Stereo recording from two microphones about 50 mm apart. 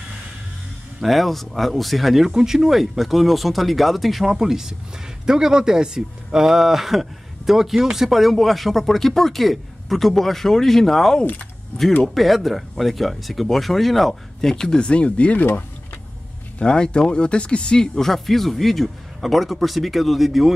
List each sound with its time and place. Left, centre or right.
1.0 s speech: centre
14.5 s speech: centre
16.5 s speech: centre